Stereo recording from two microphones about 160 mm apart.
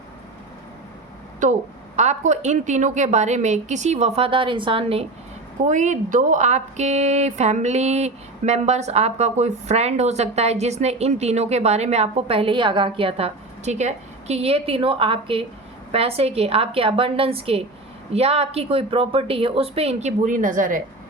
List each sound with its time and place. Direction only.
1.4 s a woman's voice: 50° right (ahead or behind); by 5.0 s 35° right (ahead or behind)
5.6 s a woman's voice: 50° right (ahead or behind)